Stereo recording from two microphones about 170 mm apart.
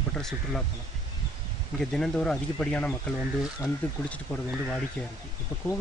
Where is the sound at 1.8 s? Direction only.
5° left (ahead or behind).